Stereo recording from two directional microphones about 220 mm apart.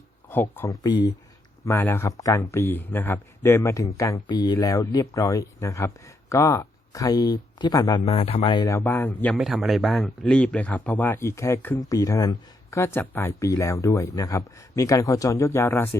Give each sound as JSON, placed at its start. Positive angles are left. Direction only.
{"t": 0.3, "sound": "speech", "side_deg": 10}